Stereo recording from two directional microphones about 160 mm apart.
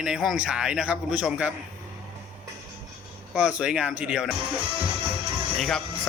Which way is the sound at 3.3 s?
5° right (ahead or behind).